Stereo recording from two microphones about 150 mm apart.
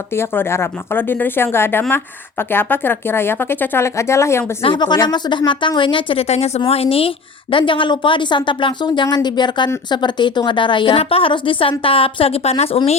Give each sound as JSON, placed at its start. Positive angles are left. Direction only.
{"t": 0.1, "sound": "a woman's voice", "side_deg": 15}
{"t": 4.6, "sound": "a woman's voice", "side_deg": 30}